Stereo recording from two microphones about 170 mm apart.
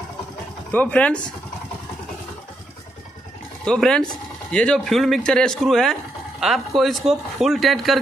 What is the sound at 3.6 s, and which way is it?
Speech, 5° left (ahead or behind).